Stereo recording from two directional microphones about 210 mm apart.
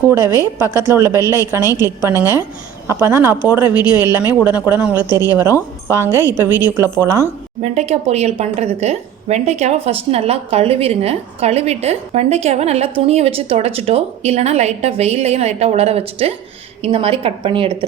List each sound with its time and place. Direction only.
0.1 s speech: 10° right (ahead or behind)
7.6 s speech: 30° right (ahead or behind)